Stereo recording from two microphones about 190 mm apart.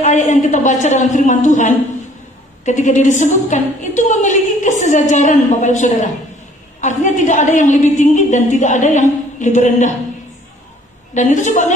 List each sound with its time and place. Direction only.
0.0 s a woman's voice: 40° left (ahead or behind)
11.1 s a woman's voice: 40° left (ahead or behind)